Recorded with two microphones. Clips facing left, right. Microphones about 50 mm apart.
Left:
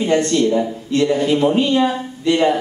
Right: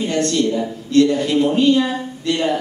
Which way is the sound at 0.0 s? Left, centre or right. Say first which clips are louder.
Left 3 dB; centre.